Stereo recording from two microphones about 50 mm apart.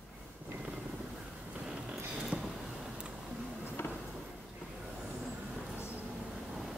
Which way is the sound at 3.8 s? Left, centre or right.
Left.